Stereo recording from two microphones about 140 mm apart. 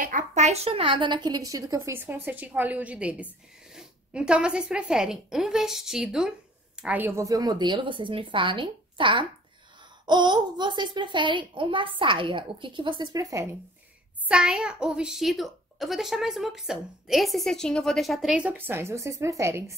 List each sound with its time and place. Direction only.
0.0 s a woman's voice: 65° right (ahead or behind); by 13.5 s 25° right (ahead or behind)
14.2 s a woman's voice: 5° right (ahead or behind)